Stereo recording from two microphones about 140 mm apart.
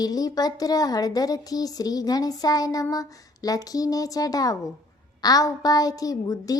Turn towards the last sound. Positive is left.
turn(degrees=25)  # may be behind; listen again after turning